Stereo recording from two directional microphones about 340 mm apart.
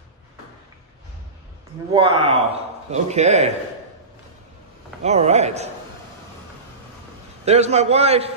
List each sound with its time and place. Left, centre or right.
2.0 s a man's voice: centre
5.0 s a man's voice: centre
7.4 s a man's voice: centre